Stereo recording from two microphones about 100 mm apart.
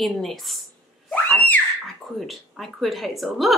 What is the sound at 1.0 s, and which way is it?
Screaming, 15° left (ahead or behind).